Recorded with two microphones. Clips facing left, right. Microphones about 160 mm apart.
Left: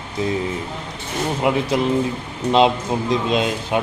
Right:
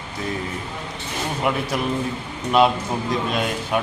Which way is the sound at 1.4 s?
20° left (ahead or behind).